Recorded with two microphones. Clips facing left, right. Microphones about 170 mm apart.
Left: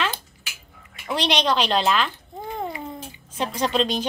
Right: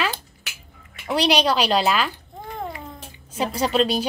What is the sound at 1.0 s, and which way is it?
Speech, 10° right (ahead or behind).